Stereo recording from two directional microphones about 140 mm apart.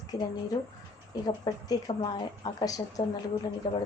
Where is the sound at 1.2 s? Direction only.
30° left (ahead or behind).